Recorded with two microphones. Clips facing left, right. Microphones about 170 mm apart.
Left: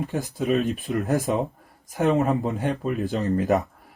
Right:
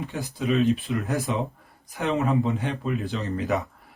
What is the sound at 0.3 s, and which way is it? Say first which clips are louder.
Speech: right 2 dB; 45° left (ahead or behind).